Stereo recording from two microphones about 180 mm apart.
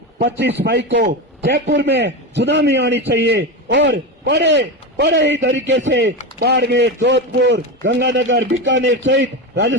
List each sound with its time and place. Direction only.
0.2 s a man's voice: 65° right (ahead or behind); by 6.1 s 80° right
6.4 s a man's voice: 65° right (ahead or behind); by 9.7 s 85° right